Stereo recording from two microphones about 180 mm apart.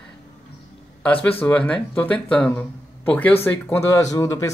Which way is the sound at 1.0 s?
5° left (ahead or behind).